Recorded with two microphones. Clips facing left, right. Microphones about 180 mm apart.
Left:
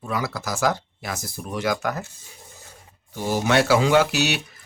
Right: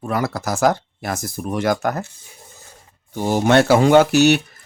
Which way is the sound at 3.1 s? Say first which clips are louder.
Right 5 dB; 50° right (ahead or behind).